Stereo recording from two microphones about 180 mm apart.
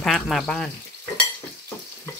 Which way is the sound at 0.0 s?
Centre (ahead or behind).